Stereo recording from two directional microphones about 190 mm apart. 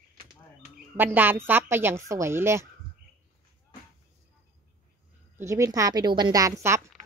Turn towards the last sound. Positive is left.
turn(degrees=-15)  # may be behind; listen again after turning